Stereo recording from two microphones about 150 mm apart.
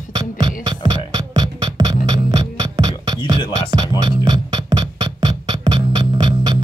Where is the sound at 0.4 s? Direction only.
30° right (ahead or behind).